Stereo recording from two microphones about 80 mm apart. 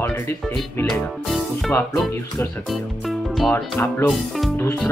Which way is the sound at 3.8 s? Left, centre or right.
Left.